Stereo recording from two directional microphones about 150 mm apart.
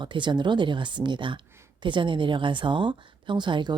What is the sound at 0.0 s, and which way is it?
Speech, 30° right (ahead or behind).